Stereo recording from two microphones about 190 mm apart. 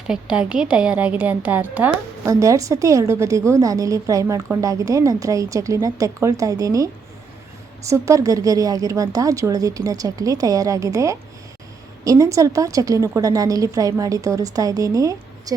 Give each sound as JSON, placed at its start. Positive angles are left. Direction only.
{"t": 0.1, "sound": "a woman's voice", "side_deg": -5}